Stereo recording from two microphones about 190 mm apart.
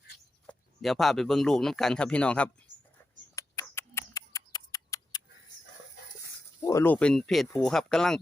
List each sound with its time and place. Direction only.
0.4 s speech: centre (ahead or behind)
3.3 s a sound: 15° left (ahead or behind)
6.7 s speech: 10° left (ahead or behind)